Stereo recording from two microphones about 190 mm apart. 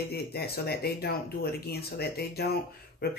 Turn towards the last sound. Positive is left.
turn(degrees=55)  # may be behind; listen again after turning